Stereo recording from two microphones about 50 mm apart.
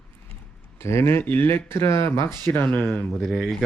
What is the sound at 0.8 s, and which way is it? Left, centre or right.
Speech, left.